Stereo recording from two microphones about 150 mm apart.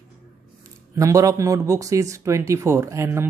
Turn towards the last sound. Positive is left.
turn(degrees=-20)  # may be behind; listen again after turning